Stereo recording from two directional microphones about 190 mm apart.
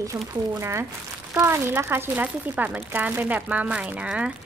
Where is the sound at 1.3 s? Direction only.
15° right (ahead or behind).